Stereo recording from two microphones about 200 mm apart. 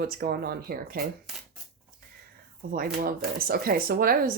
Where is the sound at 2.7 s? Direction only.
45° right (ahead or behind).